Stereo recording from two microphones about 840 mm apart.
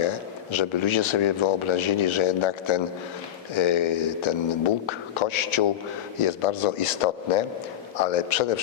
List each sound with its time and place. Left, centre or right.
0.5 s a man's voice: left